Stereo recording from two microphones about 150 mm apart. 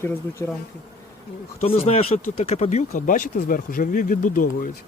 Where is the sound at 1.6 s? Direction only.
45° left (ahead or behind).